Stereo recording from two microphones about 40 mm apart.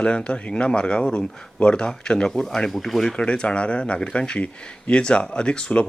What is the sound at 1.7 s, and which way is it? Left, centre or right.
Speech, left.